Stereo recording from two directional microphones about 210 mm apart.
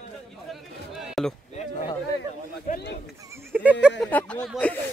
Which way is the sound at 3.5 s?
5° right (ahead or behind).